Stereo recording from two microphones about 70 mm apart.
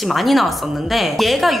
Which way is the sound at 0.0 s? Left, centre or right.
Centre.